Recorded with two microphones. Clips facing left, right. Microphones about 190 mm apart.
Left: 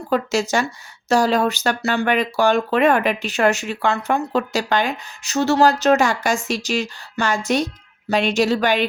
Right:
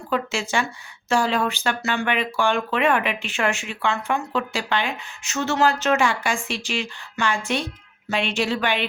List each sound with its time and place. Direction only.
0.1 s speech: 40° left (ahead or behind)